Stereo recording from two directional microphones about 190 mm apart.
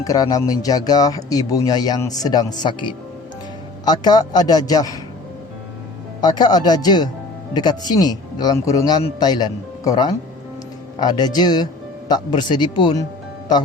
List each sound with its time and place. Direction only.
0.0 s speech: 20° left (ahead or behind)
6.2 s speech: 20° left (ahead or behind)